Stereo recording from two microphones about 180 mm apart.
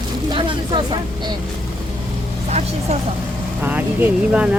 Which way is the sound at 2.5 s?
40° right (ahead or behind).